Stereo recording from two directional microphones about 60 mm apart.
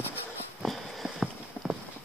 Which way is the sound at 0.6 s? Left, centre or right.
Centre.